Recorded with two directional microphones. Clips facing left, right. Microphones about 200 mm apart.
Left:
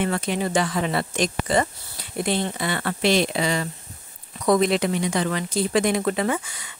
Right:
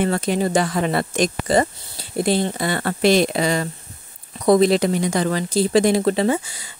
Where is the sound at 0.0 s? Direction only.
40° right (ahead or behind).